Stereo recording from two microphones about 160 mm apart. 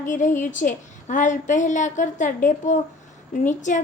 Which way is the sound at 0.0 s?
50° left (ahead or behind).